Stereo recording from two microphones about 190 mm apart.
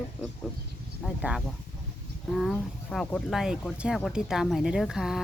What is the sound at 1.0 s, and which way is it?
Speech, 5° right (ahead or behind).